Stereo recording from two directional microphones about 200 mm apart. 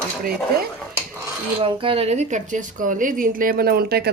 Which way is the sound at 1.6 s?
25° right (ahead or behind).